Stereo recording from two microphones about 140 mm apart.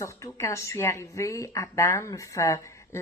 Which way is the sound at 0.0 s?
20° left (ahead or behind).